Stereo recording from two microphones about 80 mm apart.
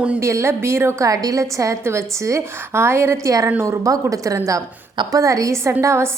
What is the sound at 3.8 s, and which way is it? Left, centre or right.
A woman's voice, right.